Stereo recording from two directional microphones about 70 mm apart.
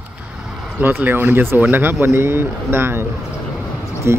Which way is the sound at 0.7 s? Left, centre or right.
Right.